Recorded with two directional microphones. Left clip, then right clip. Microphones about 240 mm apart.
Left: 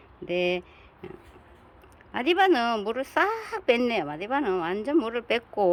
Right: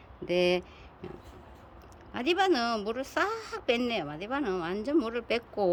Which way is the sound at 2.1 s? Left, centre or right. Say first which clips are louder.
Left 5 dB; centre.